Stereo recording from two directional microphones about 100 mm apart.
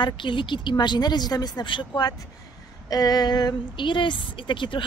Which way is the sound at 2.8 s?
40° left (ahead or behind).